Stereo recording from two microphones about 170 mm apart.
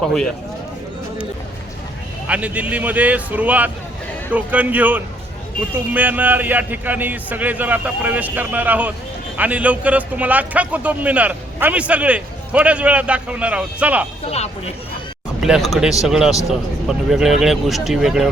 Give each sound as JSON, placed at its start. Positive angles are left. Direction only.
{"t": 2.2, "sound": "a man's voice", "side_deg": -10}
{"t": 14.3, "sound": "speech", "side_deg": 40}
{"t": 15.4, "sound": "speech", "side_deg": 0}